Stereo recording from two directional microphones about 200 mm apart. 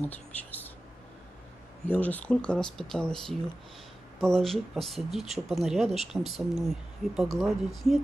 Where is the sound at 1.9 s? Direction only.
10° left (ahead or behind).